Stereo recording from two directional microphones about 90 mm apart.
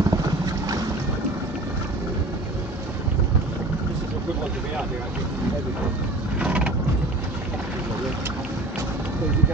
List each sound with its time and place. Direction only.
0.0 s boat: 45° right (ahead or behind)
6.4 s vehicle: 15° right (ahead or behind)